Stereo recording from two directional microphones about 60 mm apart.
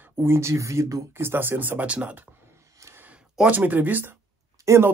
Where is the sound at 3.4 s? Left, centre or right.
Right.